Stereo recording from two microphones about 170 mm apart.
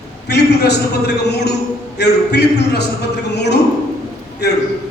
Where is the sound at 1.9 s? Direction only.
75° left (ahead or behind).